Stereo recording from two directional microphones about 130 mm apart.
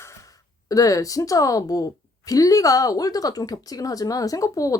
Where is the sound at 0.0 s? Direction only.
25° left (ahead or behind).